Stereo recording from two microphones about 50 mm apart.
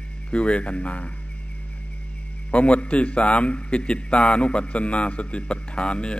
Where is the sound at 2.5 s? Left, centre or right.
Left.